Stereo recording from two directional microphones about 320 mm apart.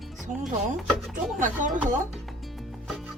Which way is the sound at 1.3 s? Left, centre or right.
Right.